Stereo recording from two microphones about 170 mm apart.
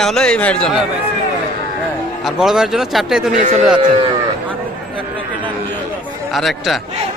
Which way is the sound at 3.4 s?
45° right (ahead or behind).